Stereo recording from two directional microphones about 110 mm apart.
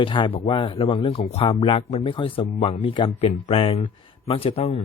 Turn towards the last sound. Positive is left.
turn(degrees=65)  # may be behind; listen again after turning